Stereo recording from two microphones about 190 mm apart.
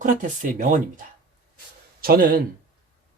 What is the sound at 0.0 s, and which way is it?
Speech, 45° right (ahead or behind).